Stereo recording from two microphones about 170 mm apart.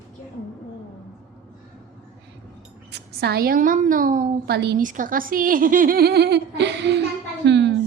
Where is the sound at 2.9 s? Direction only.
75° right (ahead or behind); by 7.0 s 90° right.